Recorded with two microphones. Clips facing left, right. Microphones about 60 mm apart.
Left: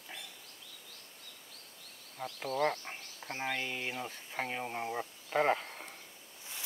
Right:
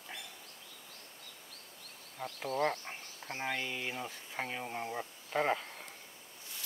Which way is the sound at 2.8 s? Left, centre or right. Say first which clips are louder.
Left 1 dB; centre.